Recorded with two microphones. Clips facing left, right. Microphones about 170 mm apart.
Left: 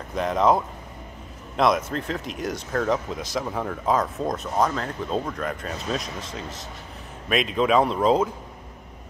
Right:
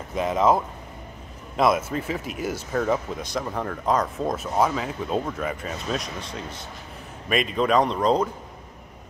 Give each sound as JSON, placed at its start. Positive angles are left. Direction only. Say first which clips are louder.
{"t": 0.1, "sound": "speech", "louder": "even", "side_deg": -5}